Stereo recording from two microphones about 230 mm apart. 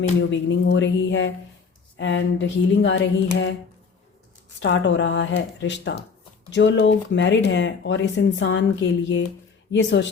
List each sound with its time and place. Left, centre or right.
0.3 s speech: left
4.6 s speech: left